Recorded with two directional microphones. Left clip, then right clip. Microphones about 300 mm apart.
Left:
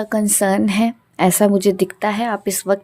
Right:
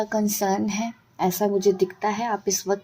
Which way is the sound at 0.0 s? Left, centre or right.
Left.